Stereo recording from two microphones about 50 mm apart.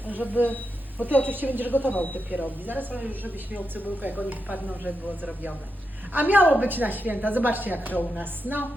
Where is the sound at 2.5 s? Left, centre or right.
Right.